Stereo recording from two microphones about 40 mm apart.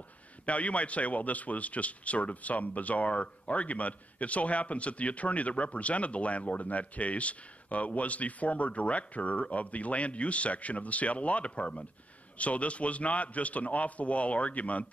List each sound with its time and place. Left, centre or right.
0.5 s a man's voice: left